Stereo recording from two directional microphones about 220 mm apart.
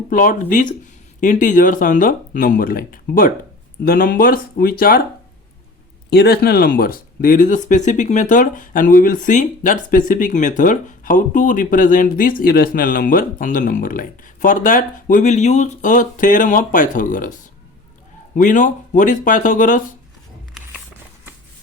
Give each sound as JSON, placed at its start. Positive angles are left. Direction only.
{"t": 0.1, "sound": "speech", "side_deg": 40}
{"t": 6.1, "sound": "speech", "side_deg": 50}